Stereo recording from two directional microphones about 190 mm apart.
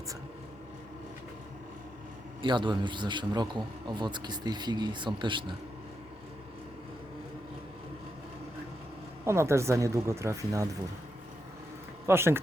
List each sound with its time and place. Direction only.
2.4 s a man's voice: 25° right (ahead or behind)
9.2 s speech: 15° right (ahead or behind)
12.0 s speech: 15° right (ahead or behind)